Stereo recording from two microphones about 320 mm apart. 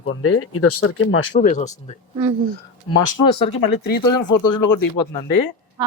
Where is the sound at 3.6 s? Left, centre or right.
Left.